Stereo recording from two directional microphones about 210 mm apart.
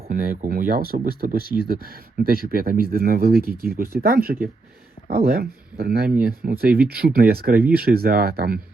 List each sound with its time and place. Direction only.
0.1 s speech: 45° right (ahead or behind)